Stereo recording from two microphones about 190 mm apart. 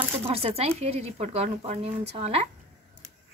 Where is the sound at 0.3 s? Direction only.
30° right (ahead or behind).